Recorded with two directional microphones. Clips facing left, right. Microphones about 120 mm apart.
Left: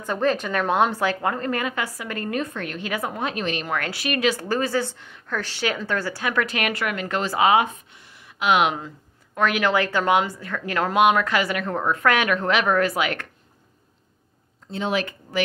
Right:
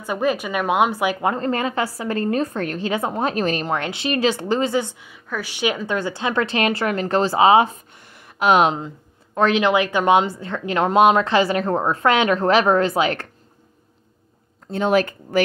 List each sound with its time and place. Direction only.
0.0 s speech: 10° right (ahead or behind)
1.3 s a woman's voice: 30° right (ahead or behind)
2.9 s a woman's voice: 25° right (ahead or behind)
7.9 s a sound: 50° right (ahead or behind)
8.7 s a woman's voice: 25° right (ahead or behind)
14.7 s speech: 50° right (ahead or behind)